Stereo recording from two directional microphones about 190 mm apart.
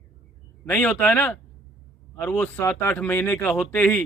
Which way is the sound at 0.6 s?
10° left (ahead or behind).